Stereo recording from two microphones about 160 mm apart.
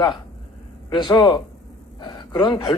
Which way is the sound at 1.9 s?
25° left (ahead or behind).